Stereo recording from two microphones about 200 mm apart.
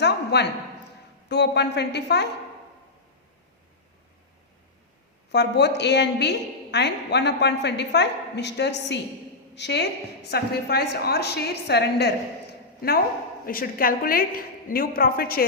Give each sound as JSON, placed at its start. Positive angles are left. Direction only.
{"t": 0.0, "sound": "a sound", "side_deg": 55}
{"t": 1.3, "sound": "a woman's voice", "side_deg": 55}
{"t": 5.3, "sound": "a woman's voice", "side_deg": 55}
{"t": 13.4, "sound": "a woman's voice", "side_deg": 45}